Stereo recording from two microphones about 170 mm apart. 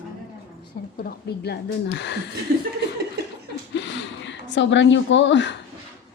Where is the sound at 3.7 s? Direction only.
90° left.